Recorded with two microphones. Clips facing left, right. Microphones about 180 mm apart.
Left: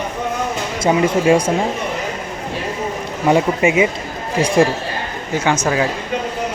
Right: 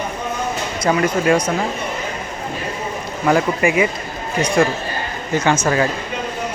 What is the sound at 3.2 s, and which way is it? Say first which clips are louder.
Speech: left 2 dB; 25° left (ahead or behind).